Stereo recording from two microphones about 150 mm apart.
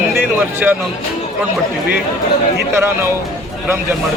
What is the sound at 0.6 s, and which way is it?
Speech, 10° right (ahead or behind).